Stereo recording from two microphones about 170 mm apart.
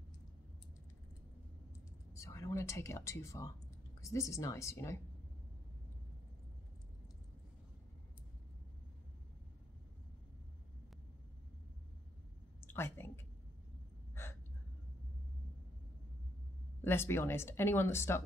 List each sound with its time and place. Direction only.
2.1 s speech: 15° left (ahead or behind)
12.6 s a sound: 15° left (ahead or behind)
16.8 s speech: 15° left (ahead or behind)